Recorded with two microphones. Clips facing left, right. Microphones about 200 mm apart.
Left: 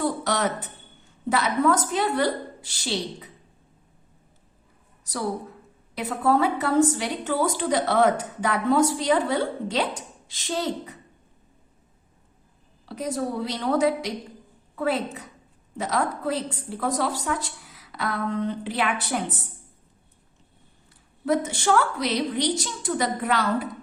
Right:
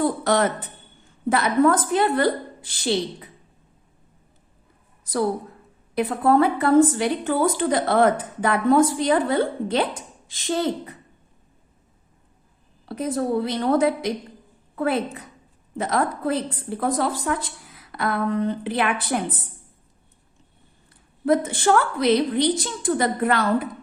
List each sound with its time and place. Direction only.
0.3 s a woman's voice: 55° right (ahead or behind)
6.0 s a woman's voice: 55° right (ahead or behind)
12.8 s a woman's voice: 55° right (ahead or behind)
21.2 s a woman's voice: 55° right (ahead or behind)